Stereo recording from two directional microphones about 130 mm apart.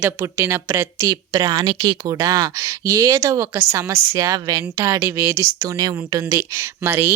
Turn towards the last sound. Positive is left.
turn(degrees=-15)  # may be behind; listen again after turning